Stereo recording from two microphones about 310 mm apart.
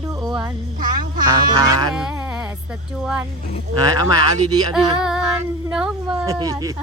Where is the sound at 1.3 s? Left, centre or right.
Centre.